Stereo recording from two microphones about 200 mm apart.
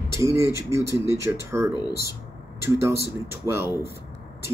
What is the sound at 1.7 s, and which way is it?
Speech, 20° left (ahead or behind).